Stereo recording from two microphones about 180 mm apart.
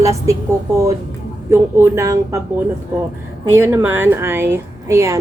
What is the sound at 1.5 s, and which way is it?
Speech, 15° right (ahead or behind).